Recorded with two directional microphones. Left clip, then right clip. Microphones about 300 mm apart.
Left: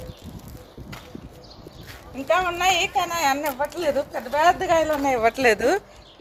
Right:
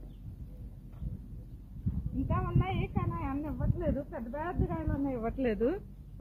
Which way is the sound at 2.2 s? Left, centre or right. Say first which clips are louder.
Left 17 dB; left.